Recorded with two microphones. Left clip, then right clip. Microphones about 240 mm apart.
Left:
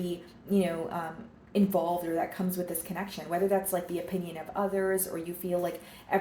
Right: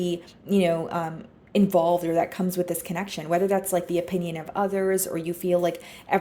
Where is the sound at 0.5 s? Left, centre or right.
Right.